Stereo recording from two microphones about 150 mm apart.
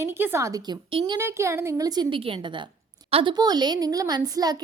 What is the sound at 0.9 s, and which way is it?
Speech, 35° right (ahead or behind).